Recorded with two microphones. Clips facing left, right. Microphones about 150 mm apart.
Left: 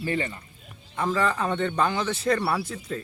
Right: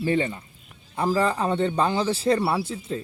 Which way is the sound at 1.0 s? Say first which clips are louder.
Right 2 dB; 35° right (ahead or behind).